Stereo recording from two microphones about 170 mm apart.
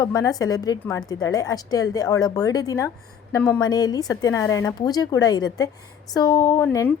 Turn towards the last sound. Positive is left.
turn(degrees=20)  # may be behind; listen again after turning